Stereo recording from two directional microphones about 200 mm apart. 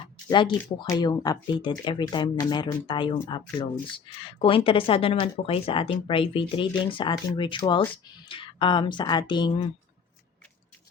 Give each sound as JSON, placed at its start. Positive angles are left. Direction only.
{"t": 0.3, "sound": "speech", "side_deg": 25}